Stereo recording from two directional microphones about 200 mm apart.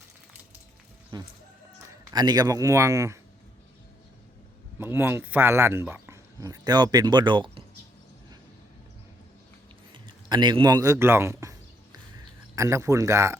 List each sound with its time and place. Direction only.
1.1 s chicken: 20° right (ahead or behind)
2.1 s speech: 20° right (ahead or behind)
4.8 s speech: 10° right (ahead or behind)
9.9 s a sound: 20° right (ahead or behind)
12.5 s speech: 15° right (ahead or behind)